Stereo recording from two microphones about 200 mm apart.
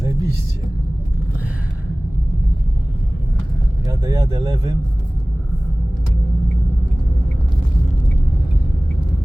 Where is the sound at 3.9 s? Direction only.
15° right (ahead or behind).